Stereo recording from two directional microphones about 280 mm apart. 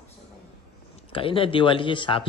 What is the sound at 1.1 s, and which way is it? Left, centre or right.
Speech, centre.